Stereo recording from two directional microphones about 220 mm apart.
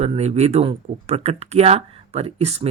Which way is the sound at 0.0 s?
30° right (ahead or behind).